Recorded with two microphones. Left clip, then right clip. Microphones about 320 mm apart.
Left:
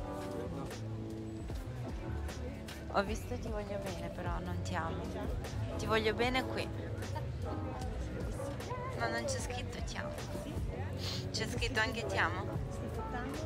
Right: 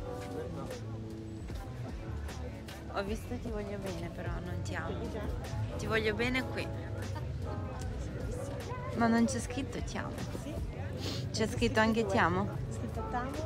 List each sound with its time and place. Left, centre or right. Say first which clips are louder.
2.9 s speech: left 2 dB; centre
8.9 s a woman's voice: right 7 dB; centre
11.1 s a woman's voice: right 4 dB; centre